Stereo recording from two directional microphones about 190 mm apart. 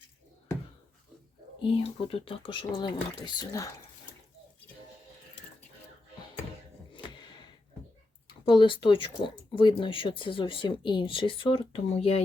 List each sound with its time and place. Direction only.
2.0 s speech: 30° left (ahead or behind)
6.9 s a sound: 25° left (ahead or behind)
8.3 s speech: 25° left (ahead or behind)